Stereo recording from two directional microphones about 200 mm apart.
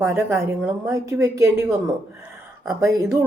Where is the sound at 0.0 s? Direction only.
10° right (ahead or behind).